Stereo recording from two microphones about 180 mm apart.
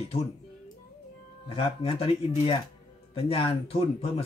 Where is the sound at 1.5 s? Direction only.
30° left (ahead or behind).